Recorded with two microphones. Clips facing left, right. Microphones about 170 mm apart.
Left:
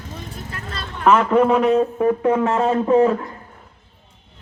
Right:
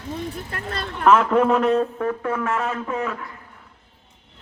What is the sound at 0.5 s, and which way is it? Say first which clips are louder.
Speech: right 3 dB; 55° right (ahead or behind).